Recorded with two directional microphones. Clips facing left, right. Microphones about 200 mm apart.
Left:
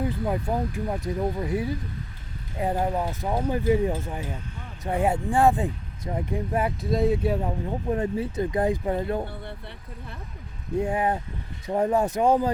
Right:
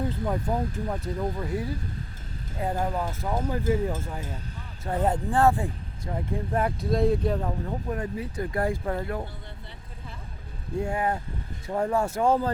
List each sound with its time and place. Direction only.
0.0 s speech: 10° left (ahead or behind)
7.7 s speech: 25° left (ahead or behind)
9.2 s speech: 60° left (ahead or behind)
10.8 s speech: 15° left (ahead or behind)